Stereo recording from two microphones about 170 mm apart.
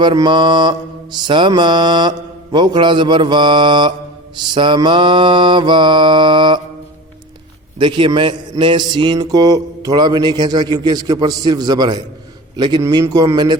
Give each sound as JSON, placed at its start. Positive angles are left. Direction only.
{"t": 0.0, "sound": "a man's voice", "side_deg": -25}
{"t": 7.8, "sound": "a man's voice", "side_deg": -30}